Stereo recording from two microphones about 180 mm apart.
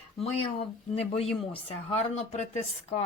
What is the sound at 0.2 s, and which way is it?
A woman's voice, 35° left (ahead or behind).